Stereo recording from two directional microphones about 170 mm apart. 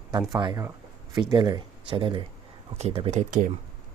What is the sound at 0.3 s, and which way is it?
Speech, 25° right (ahead or behind).